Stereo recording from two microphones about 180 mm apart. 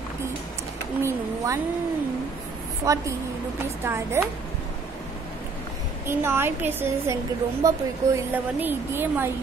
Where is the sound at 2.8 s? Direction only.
20° right (ahead or behind).